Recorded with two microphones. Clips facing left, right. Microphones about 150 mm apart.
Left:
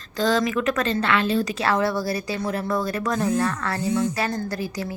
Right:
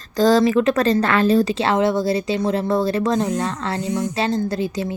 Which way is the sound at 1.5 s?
25° right (ahead or behind).